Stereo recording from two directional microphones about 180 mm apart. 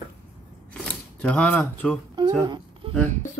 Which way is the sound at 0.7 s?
5° left (ahead or behind).